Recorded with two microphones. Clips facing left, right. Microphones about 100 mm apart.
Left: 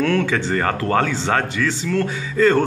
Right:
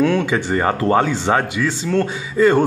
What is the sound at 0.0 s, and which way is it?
Speech, 15° right (ahead or behind).